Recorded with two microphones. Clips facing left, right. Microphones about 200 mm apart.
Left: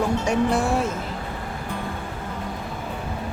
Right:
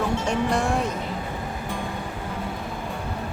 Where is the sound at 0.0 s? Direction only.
10° left (ahead or behind).